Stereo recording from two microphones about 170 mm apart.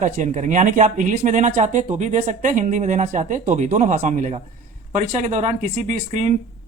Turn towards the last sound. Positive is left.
turn(degrees=-45)  # may be behind; listen again after turning